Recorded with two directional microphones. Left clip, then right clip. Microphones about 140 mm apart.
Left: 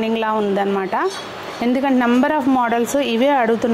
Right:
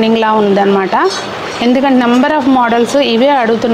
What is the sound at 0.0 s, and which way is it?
A woman's voice, 5° left (ahead or behind).